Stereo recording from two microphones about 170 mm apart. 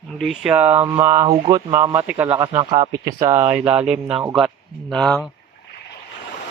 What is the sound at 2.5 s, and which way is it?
Speech, 30° right (ahead or behind).